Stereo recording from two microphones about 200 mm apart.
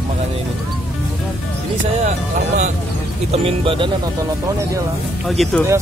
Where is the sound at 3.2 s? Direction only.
30° right (ahead or behind).